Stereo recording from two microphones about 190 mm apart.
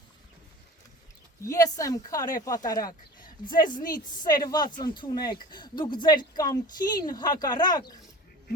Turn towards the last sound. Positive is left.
turn(degrees=20)  # may be behind; listen again after turning